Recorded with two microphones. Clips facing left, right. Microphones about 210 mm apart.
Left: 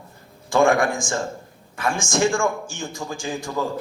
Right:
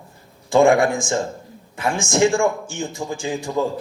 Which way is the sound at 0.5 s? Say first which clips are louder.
Right 3 dB; 20° right (ahead or behind).